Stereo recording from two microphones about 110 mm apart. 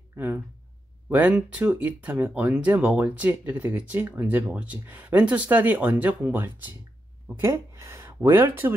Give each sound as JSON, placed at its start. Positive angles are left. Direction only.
{"t": 0.1, "sound": "speech", "side_deg": -15}